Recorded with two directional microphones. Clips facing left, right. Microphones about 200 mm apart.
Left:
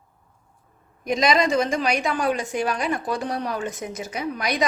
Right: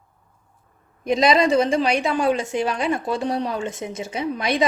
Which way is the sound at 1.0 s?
30° right (ahead or behind).